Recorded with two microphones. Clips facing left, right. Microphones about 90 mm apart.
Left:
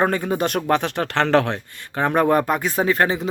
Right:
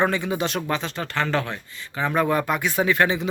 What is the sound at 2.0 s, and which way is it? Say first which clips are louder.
Speech: left 4 dB; 50° left (ahead or behind).